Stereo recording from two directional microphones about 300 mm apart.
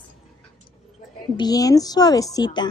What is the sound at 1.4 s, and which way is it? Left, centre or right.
Speech, centre.